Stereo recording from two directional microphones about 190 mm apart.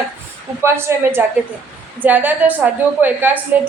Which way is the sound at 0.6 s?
10° right (ahead or behind).